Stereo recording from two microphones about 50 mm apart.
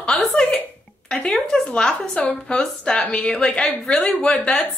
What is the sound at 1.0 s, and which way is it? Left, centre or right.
Speech, centre.